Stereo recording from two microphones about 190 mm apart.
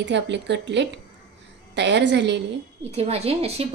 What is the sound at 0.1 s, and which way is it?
Speech, 65° right (ahead or behind).